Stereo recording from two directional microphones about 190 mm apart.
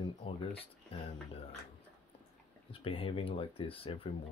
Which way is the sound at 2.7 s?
30° left (ahead or behind).